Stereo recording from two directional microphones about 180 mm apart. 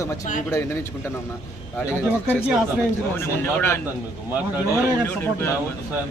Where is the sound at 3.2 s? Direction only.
10° left (ahead or behind).